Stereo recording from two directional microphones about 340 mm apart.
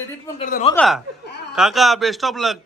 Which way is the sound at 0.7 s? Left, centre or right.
Centre.